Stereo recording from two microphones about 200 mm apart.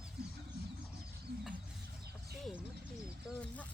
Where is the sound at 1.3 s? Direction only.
55° right (ahead or behind).